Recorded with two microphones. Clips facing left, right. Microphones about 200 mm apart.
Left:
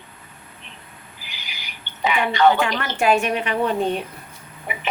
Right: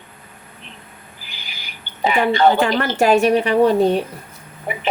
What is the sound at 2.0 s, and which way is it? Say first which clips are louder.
Speech: right 3 dB; 35° right (ahead or behind).